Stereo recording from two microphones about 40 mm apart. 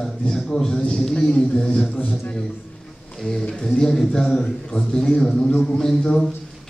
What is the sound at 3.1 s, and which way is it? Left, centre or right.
A man's voice, centre.